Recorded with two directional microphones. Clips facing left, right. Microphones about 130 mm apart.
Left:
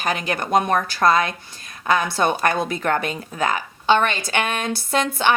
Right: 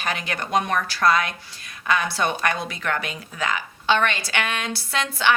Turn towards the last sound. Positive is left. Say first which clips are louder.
# left 3 dB
turn(degrees=50)  # may be behind; listen again after turning